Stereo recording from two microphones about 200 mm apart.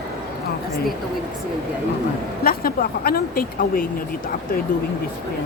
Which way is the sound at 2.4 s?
50° left (ahead or behind).